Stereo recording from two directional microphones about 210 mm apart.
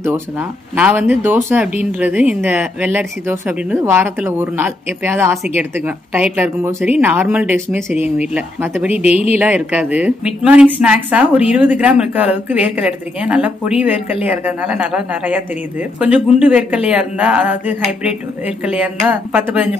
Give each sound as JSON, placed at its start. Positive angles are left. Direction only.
{"t": 0.0, "sound": "speech", "side_deg": -10}
{"t": 9.0, "sound": "speech", "side_deg": 30}
{"t": 9.4, "sound": "speech", "side_deg": -10}